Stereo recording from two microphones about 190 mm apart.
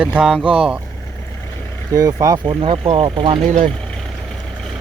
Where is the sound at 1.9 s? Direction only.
20° right (ahead or behind).